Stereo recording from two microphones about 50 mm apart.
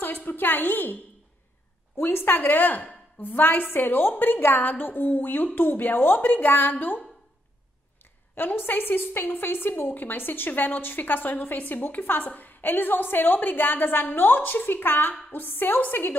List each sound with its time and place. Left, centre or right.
0.0 s a woman's voice: left
2.0 s a woman's voice: left
8.0 s a woman's voice: left